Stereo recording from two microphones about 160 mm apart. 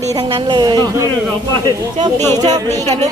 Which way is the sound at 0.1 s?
30° right (ahead or behind).